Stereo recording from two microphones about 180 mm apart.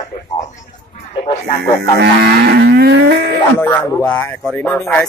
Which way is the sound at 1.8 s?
65° right (ahead or behind).